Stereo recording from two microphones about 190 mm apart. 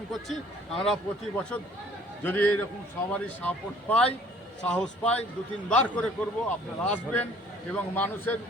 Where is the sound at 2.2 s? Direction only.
10° left (ahead or behind).